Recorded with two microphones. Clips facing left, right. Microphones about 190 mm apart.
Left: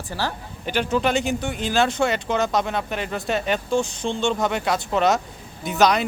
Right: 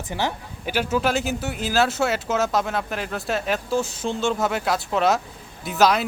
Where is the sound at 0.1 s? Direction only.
20° right (ahead or behind).